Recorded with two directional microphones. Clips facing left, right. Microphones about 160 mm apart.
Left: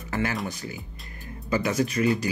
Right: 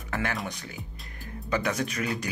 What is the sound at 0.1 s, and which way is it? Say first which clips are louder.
Speech: left 3 dB; centre (ahead or behind).